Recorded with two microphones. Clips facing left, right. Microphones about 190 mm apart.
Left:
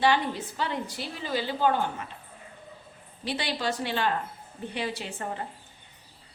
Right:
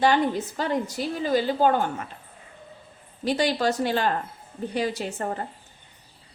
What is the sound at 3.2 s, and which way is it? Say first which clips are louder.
A woman's voice: right 7 dB; 45° right (ahead or behind).